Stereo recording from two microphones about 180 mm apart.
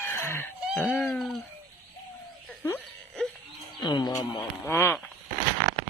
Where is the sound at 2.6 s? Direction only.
10° left (ahead or behind).